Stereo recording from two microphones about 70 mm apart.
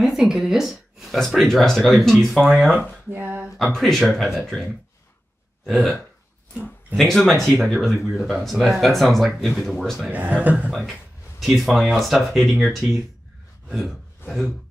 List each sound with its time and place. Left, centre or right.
0.0 s speech: centre
3.1 s a man's voice: right
3.5 s speech: centre
5.7 s speech: centre
7.0 s speech: centre
10.1 s a man's voice: right
10.7 s speech: centre
13.7 s a sound: centre
14.2 s speech: left